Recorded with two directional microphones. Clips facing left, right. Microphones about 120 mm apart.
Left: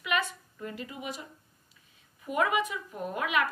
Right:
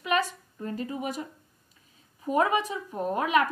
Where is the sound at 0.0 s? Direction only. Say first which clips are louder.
Right 4 dB; 35° right (ahead or behind).